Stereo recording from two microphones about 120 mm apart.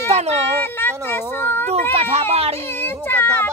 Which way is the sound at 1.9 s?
60° right (ahead or behind).